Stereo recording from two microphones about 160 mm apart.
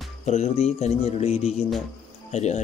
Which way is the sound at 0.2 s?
40° left (ahead or behind).